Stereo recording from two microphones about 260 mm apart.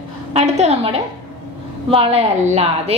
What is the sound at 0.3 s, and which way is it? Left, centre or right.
A woman's voice, right.